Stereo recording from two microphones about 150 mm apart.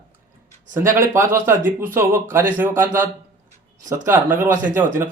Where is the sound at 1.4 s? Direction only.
15° right (ahead or behind).